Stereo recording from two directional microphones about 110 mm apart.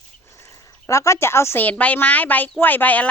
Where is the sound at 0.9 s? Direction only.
25° left (ahead or behind).